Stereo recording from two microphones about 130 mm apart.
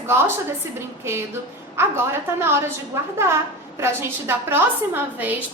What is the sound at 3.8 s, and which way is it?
A woman's voice, 20° right (ahead or behind).